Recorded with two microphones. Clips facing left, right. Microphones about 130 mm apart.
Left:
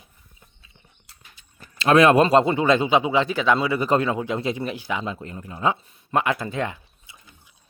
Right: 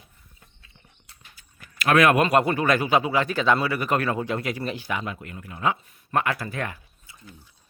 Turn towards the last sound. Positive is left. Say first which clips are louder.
# right 4 dB
turn(degrees=15)  # may be behind; listen again after turning